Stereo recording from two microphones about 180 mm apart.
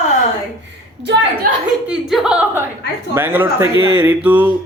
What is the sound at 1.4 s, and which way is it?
Speech, 50° right (ahead or behind).